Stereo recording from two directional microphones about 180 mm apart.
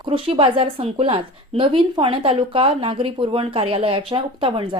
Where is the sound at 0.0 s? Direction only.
30° right (ahead or behind).